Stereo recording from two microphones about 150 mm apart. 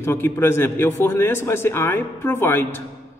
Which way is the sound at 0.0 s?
15° left (ahead or behind).